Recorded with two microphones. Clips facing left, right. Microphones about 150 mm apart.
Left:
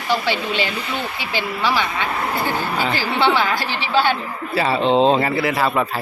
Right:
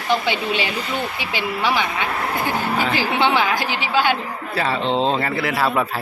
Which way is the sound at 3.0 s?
15° right (ahead or behind).